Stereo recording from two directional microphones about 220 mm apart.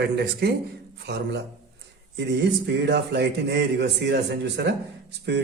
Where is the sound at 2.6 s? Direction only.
50° right (ahead or behind).